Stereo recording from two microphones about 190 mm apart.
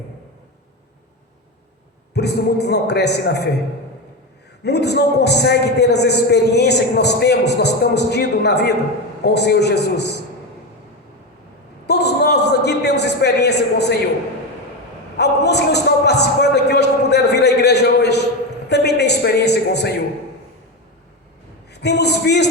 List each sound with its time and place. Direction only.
2.1 s a man's voice: 60° left (ahead or behind)
4.6 s a man's voice: 60° left (ahead or behind)
11.9 s a sound: 60° left (ahead or behind)
15.2 s a man's voice: 60° left (ahead or behind)
21.7 s a man's voice: 60° left (ahead or behind)